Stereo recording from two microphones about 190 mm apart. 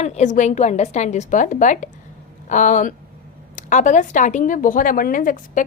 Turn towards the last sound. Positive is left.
turn(degrees=45)  # may be behind; listen again after turning